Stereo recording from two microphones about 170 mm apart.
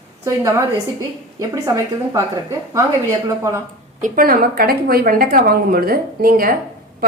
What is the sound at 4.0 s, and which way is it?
A woman's voice, 60° right (ahead or behind).